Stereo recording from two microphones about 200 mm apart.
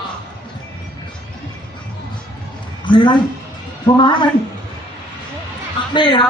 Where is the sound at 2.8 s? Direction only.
25° left (ahead or behind).